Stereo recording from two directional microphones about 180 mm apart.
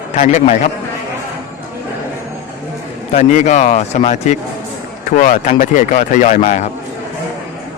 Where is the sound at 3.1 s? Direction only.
40° left (ahead or behind).